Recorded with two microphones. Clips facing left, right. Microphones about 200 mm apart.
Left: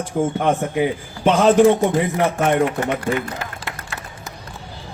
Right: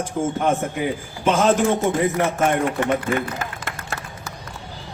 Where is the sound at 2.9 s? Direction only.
50° right (ahead or behind).